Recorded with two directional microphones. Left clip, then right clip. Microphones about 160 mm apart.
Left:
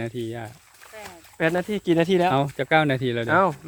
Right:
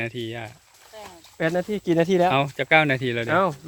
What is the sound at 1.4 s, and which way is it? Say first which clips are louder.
Speech: left 1 dB; 40° right (ahead or behind).